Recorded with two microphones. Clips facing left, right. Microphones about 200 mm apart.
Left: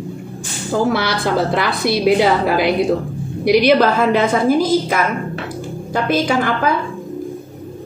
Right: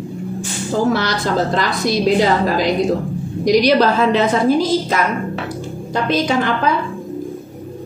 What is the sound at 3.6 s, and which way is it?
Speech, 50° left (ahead or behind).